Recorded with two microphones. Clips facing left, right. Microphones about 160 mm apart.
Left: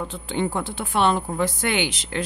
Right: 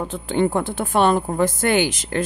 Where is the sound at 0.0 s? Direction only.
50° right (ahead or behind).